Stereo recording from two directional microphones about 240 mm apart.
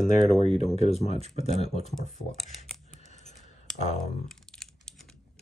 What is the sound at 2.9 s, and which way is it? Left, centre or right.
Scissors, left.